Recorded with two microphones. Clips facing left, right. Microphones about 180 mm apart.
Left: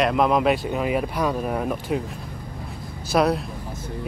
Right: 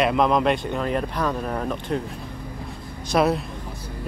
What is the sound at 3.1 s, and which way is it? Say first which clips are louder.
Speech: even; centre (ahead or behind).